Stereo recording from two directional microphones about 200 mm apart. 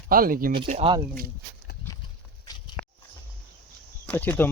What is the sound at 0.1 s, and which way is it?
Speech, 45° right (ahead or behind).